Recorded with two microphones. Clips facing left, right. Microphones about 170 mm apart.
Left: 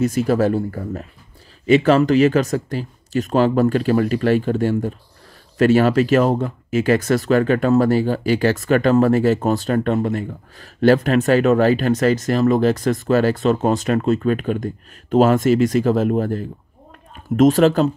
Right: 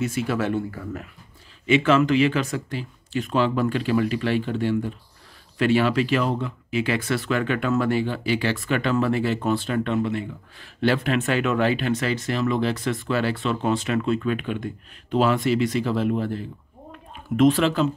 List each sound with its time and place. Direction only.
0.0 s speech: 40° left (ahead or behind)